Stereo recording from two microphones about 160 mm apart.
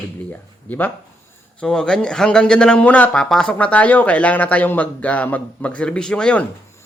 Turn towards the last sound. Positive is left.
turn(degrees=5)  # may be behind; listen again after turning